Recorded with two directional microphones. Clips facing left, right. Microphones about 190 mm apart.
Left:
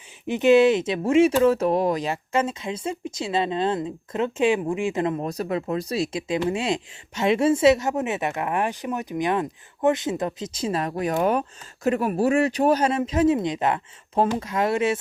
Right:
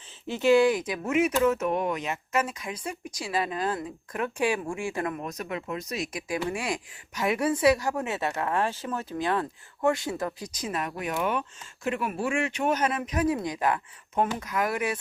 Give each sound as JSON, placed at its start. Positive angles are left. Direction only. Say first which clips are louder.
{"t": 0.3, "sound": "speech", "louder": "left 4 dB", "side_deg": 20}